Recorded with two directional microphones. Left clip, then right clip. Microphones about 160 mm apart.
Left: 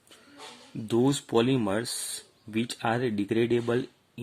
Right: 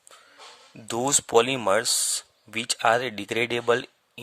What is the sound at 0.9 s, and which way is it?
Speech, 35° right (ahead or behind).